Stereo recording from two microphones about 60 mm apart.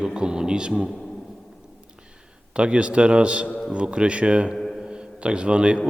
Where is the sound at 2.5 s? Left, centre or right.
Centre.